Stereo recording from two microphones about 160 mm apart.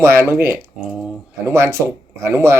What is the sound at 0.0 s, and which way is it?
Speech, 15° right (ahead or behind).